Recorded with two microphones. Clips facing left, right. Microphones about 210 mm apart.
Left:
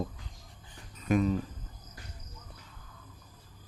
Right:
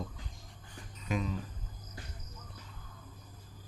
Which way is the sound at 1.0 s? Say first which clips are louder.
Left 8 dB; 50° left (ahead or behind).